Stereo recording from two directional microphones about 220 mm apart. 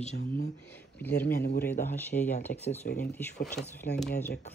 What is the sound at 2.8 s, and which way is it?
Speech, 45° left (ahead or behind).